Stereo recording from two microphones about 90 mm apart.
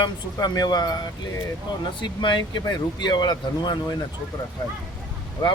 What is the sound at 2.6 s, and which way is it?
Speech, 50° left (ahead or behind).